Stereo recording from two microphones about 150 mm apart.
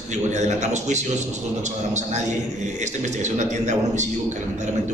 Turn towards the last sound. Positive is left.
turn(degrees=-50)  # may be behind; listen again after turning